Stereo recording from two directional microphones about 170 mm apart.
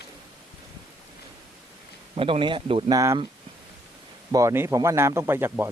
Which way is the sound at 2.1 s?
30° right (ahead or behind).